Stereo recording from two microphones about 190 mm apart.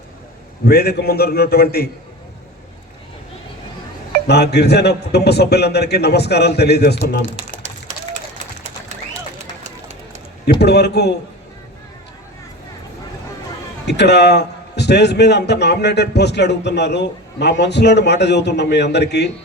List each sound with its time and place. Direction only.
0.7 s a man's voice: 55° left (ahead or behind)
4.3 s a man's voice: 60° left (ahead or behind)
7.9 s a sound: 35° right (ahead or behind)
9.6 s run: 35° right (ahead or behind)
10.6 s a man's voice: 60° left (ahead or behind)
13.8 s a man's voice: 60° left (ahead or behind)